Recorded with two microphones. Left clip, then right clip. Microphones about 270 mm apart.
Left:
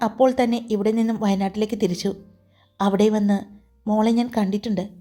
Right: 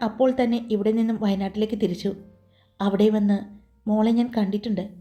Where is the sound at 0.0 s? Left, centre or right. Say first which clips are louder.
Left 3 dB; left.